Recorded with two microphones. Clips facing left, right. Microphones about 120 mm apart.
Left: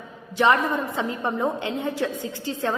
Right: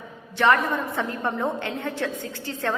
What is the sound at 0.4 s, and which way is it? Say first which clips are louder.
A woman's voice: left 1 dB; 15° left (ahead or behind).